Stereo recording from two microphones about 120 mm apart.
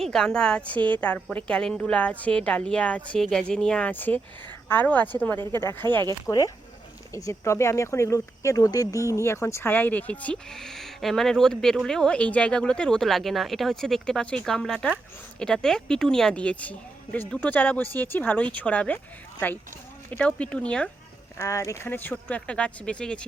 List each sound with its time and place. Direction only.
0.0 s a woman's voice: 5° left (ahead or behind)
20.1 s speech: 10° left (ahead or behind)
21.3 s speech: 25° left (ahead or behind); by 23.2 s 10° left (ahead or behind)